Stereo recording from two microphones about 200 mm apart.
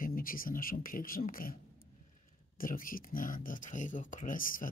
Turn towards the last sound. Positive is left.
turn(degrees=45)  # may be behind; listen again after turning